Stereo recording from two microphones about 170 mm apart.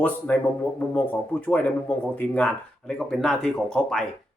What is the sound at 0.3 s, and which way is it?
Speech, 10° left (ahead or behind).